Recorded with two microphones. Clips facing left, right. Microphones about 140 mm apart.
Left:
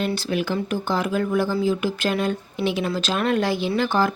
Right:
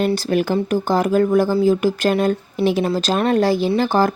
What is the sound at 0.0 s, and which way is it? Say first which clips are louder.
Speech: right 6 dB; 45° right (ahead or behind).